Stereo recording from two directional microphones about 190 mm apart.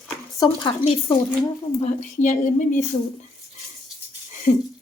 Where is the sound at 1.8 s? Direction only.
40° left (ahead or behind).